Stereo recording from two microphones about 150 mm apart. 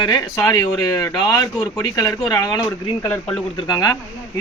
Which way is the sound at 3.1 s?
5° left (ahead or behind).